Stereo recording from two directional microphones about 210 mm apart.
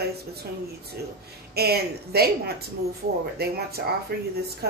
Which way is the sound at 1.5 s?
50° right (ahead or behind).